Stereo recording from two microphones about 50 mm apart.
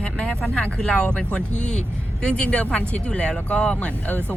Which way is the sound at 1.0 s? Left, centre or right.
Left.